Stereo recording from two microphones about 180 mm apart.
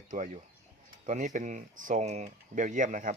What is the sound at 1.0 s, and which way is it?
Speech, 40° right (ahead or behind).